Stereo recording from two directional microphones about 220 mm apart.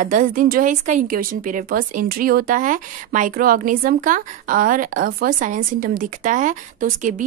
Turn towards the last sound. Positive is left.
turn(degrees=-35)  # may be behind; listen again after turning